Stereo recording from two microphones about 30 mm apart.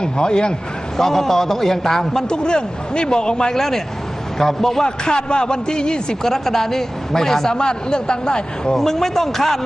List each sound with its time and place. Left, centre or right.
0.0 s a man's voice: left
0.9 s a man's voice: centre
2.2 s a man's voice: left
3.5 s a man's voice: centre
4.8 s a man's voice: left
6.2 s a man's voice: centre
7.5 s a man's voice: left
8.7 s a man's voice: centre